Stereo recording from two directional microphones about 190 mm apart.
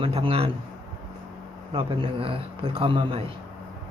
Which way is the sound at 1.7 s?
30° right (ahead or behind).